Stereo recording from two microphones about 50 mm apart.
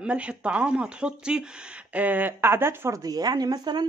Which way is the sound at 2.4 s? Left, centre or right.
Right.